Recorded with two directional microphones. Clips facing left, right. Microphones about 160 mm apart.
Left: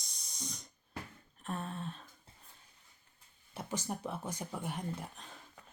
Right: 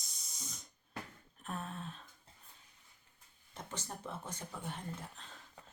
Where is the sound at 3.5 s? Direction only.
10° left (ahead or behind).